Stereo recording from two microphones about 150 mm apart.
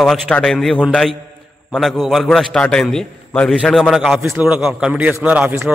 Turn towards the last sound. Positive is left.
turn(degrees=-15)  # may be behind; listen again after turning